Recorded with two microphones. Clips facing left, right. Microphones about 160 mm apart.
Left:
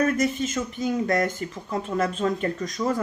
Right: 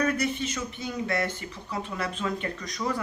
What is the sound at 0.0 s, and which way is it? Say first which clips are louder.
Speech: left 4 dB; 45° left (ahead or behind).